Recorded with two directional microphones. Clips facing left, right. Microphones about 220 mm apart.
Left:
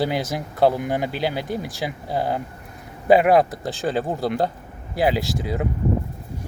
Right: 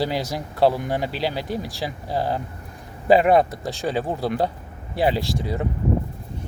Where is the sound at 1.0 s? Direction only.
50° left (ahead or behind).